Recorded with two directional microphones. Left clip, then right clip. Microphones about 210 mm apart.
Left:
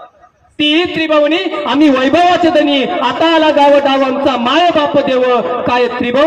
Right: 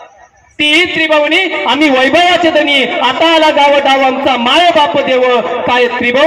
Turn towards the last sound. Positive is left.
turn(degrees=55)  # may be behind; listen again after turning